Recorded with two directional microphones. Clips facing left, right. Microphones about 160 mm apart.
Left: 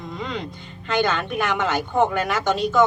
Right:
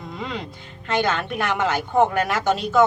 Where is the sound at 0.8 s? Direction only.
Centre (ahead or behind).